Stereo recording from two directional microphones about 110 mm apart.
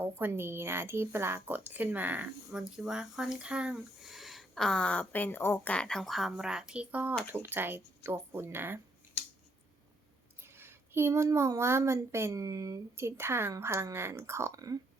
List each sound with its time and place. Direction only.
0.0 s speech: 20° right (ahead or behind); by 5.7 s 20° left (ahead or behind)
5.7 s a woman's voice: 5° left (ahead or behind); by 8.8 s 20° right (ahead or behind)
10.4 s a woman's voice: 20° right (ahead or behind)